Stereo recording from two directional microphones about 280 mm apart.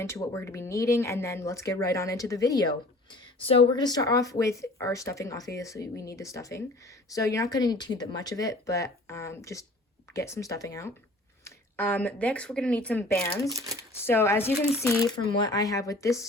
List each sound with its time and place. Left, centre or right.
0.0 s speech: centre
3.7 s speech: centre
13.5 s speech: centre
14.0 s speech: centre
15.1 s speech: centre